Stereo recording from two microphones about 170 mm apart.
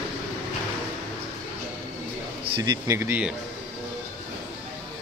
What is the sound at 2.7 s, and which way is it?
Speech, 15° right (ahead or behind).